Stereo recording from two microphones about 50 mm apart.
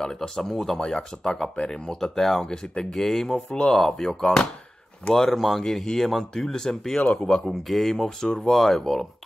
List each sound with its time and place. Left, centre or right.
0.0 s speech: centre
0.7 s speech: centre
5.1 s speech: centre
7.0 s speech: left
7.2 s speech: centre